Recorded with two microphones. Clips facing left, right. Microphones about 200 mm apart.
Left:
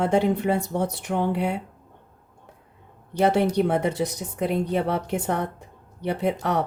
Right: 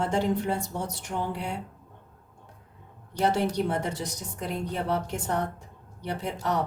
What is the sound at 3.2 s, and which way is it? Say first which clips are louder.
Speech: left 5 dB; 60° left (ahead or behind).